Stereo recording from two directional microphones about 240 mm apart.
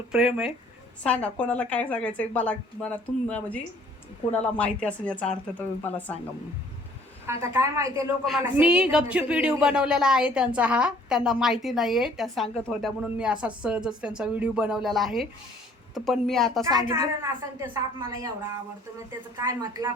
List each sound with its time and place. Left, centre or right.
0.1 s speech: centre
7.4 s a woman's voice: centre
16.7 s a woman's voice: centre